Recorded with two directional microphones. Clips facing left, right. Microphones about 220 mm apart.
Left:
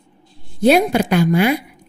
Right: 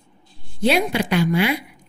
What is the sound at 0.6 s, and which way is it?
Speech, 45° left (ahead or behind).